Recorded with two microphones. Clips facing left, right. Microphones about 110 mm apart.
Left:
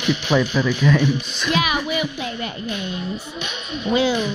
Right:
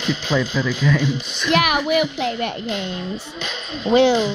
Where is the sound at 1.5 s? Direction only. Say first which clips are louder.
Right 5 dB; 65° right (ahead or behind).